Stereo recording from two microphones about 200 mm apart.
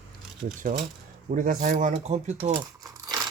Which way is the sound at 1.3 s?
40° right (ahead or behind).